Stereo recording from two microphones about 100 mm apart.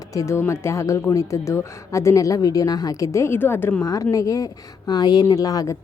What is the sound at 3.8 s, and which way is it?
A woman's voice, 35° left (ahead or behind).